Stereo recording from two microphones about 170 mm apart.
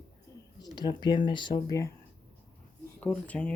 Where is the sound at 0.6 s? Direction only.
25° left (ahead or behind).